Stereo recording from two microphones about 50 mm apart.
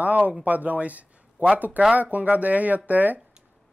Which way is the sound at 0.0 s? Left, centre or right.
Right.